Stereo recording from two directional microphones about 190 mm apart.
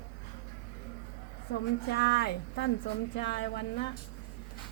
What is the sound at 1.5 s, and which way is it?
A woman's voice, 60° left (ahead or behind).